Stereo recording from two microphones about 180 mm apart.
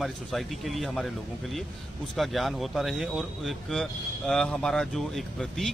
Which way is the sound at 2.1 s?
Centre (ahead or behind).